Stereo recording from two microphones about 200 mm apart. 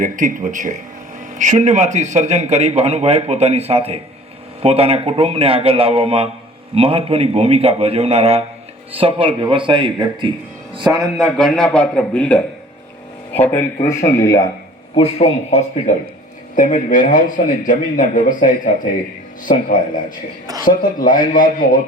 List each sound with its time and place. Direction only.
0.0 s a man's voice: 40° right (ahead or behind); by 10.3 s 25° right (ahead or behind)
11.0 s a man's voice: centre (ahead or behind)
14.9 s a man's voice: 30° left (ahead or behind)